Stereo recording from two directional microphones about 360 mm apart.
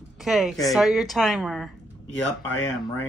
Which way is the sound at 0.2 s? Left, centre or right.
Centre.